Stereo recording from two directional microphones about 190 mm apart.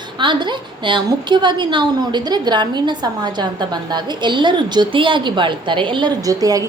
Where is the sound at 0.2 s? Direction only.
25° right (ahead or behind).